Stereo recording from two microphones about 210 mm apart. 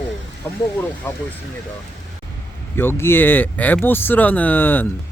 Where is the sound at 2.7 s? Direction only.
10° left (ahead or behind).